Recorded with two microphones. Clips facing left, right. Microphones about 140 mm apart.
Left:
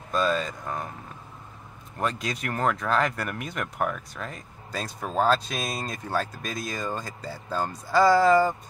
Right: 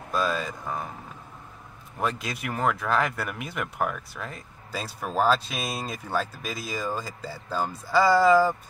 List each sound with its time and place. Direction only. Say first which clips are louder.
0.1 s speech: left 2 dB; 5° right (ahead or behind)
2.0 s speech: even; 5° right (ahead or behind)